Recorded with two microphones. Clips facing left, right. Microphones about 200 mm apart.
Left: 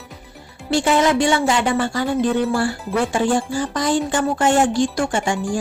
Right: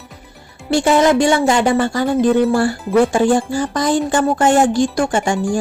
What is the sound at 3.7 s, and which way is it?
Speech, 45° right (ahead or behind).